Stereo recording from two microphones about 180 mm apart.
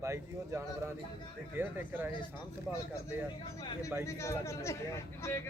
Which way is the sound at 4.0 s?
15° left (ahead or behind).